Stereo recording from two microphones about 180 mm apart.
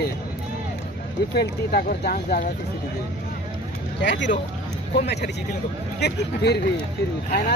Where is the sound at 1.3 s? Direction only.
60° left (ahead or behind).